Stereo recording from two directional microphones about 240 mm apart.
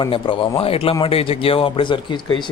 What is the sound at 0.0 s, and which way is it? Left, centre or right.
Speech, centre.